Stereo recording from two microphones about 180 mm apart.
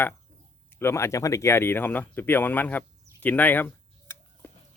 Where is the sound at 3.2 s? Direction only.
10° left (ahead or behind).